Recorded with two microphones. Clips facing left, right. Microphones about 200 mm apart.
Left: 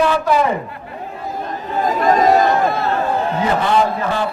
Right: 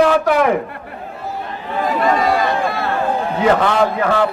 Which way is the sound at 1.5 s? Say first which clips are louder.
Left 1 dB; 40° left (ahead or behind).